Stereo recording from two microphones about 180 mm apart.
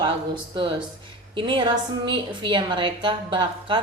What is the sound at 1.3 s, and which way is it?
A woman's voice, 25° right (ahead or behind).